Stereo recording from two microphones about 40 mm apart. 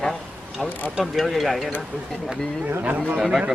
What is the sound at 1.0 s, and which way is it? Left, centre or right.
Speech, centre.